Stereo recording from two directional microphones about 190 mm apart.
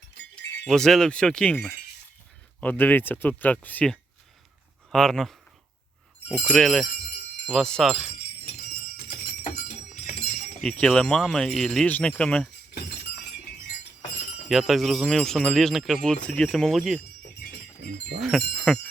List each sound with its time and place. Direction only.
0.5 s speech: 5° left (ahead or behind)
8.4 s a sound: 50° left (ahead or behind)
10.6 s speech: 5° left (ahead or behind)
14.5 s speech: centre (ahead or behind)
18.2 s speech: centre (ahead or behind)